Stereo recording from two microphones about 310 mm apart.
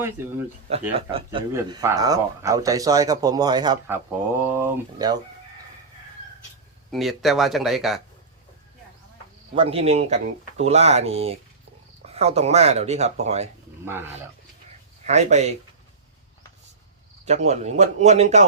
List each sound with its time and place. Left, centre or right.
0.0 s speech: centre
0.7 s speech: centre
6.9 s speech: centre
9.6 s speech: centre
15.0 s speech: right
17.2 s speech: right